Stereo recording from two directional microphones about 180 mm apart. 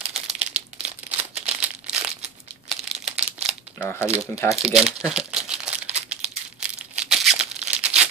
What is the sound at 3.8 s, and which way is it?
Speech, 10° left (ahead or behind).